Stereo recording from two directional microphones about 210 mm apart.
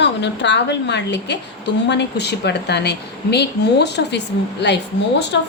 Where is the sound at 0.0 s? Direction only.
55° left (ahead or behind).